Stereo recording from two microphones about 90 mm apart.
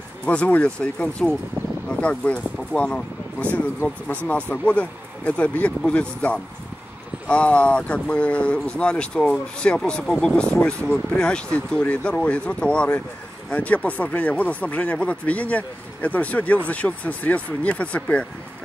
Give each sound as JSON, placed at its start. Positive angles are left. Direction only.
{"t": 0.2, "sound": "speech", "side_deg": 15}